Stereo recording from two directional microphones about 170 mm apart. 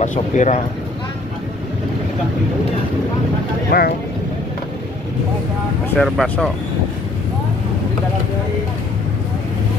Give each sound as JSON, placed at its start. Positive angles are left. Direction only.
{"t": 0.0, "sound": "speech", "side_deg": 45}
{"t": 3.7, "sound": "speech", "side_deg": 70}
{"t": 5.9, "sound": "speech", "side_deg": 0}